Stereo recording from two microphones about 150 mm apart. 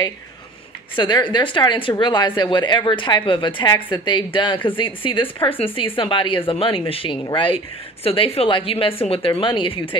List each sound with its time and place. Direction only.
0.9 s speech: 30° left (ahead or behind)